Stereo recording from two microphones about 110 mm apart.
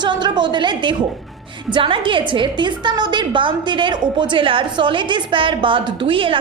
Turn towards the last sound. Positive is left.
turn(degrees=-50)  # may be behind; listen again after turning